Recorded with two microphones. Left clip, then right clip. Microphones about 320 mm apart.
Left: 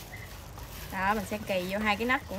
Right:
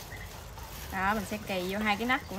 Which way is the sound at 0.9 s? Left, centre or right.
Centre.